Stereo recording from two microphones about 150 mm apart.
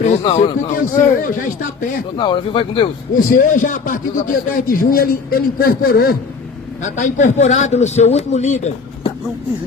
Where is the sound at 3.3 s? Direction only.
65° left (ahead or behind).